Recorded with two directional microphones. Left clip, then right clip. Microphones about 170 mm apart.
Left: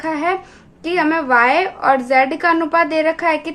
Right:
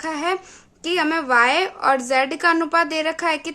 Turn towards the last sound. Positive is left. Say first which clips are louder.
# left 5 dB
turn(degrees=-40)  # may be behind; listen again after turning